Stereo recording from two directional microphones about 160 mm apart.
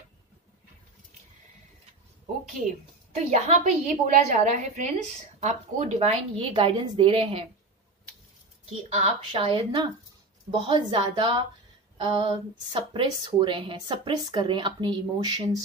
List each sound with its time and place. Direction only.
3.2 s a woman's voice: 45° right (ahead or behind)
8.6 s a woman's voice: 40° right (ahead or behind)